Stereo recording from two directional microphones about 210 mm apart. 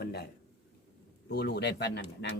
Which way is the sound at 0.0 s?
50° left (ahead or behind).